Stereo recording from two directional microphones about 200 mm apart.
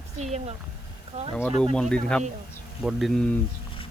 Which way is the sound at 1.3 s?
5° left (ahead or behind).